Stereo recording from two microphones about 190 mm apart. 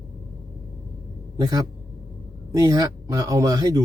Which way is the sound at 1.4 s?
20° right (ahead or behind).